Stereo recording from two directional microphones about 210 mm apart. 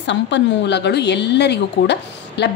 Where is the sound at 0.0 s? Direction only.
55° left (ahead or behind).